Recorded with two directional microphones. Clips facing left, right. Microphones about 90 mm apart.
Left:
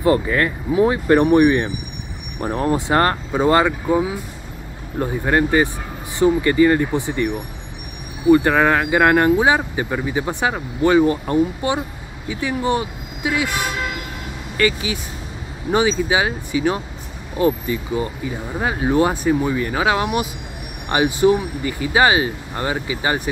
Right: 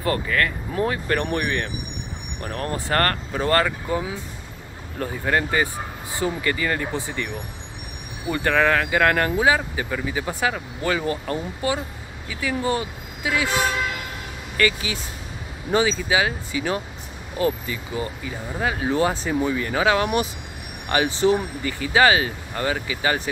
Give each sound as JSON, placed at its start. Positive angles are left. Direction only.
{"t": 0.0, "sound": "speech", "side_deg": 20}
{"t": 14.6, "sound": "speech", "side_deg": 15}